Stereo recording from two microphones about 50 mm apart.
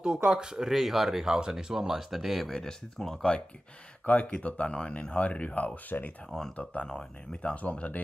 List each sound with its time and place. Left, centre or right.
0.0 s speech: centre
2.4 s speech: centre
4.0 s speech: left
7.5 s speech: left